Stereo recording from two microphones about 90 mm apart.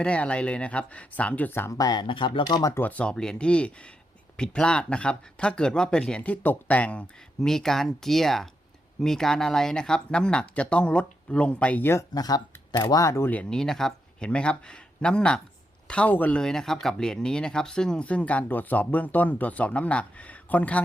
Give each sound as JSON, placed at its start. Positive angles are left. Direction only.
{"t": 0.0, "sound": "speech", "side_deg": 15}
{"t": 1.7, "sound": "speech", "side_deg": 45}
{"t": 2.7, "sound": "speech", "side_deg": 20}
{"t": 12.1, "sound": "speech", "side_deg": 45}
{"t": 13.3, "sound": "speech", "side_deg": 10}
{"t": 16.4, "sound": "speech", "side_deg": 5}